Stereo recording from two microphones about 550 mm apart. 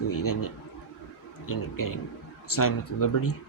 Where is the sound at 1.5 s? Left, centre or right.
Left.